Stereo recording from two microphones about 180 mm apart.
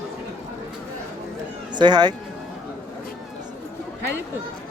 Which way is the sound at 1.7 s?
25° right (ahead or behind).